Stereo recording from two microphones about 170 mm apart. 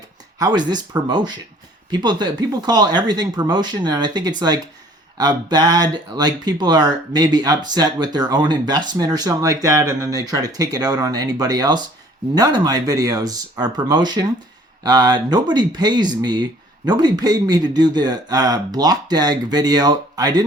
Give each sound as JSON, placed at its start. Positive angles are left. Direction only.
{"t": 0.3, "sound": "speech", "side_deg": -25}